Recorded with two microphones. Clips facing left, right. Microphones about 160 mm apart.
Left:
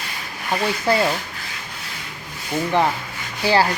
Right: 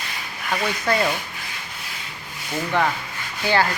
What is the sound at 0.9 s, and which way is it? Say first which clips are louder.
Speech: left 3 dB; 30° left (ahead or behind).